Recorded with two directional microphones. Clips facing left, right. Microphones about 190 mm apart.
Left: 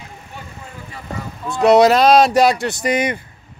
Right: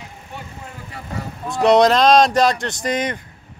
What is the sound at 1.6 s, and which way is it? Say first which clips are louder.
Speech: left 2 dB; 5° left (ahead or behind).